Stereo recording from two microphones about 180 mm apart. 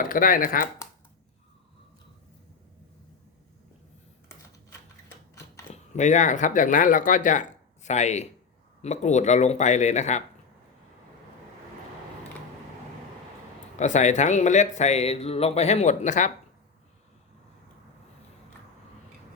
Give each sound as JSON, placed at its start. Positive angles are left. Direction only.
{"t": 0.0, "sound": "speech", "side_deg": 50}
{"t": 5.7, "sound": "speech", "side_deg": 40}
{"t": 13.7, "sound": "speech", "side_deg": 40}